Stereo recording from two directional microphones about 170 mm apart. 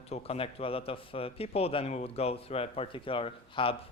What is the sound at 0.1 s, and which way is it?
A man's voice, 35° left (ahead or behind).